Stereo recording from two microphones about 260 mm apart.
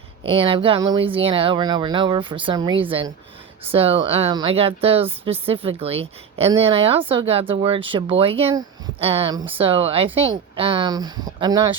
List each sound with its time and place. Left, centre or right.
0.3 s speech: right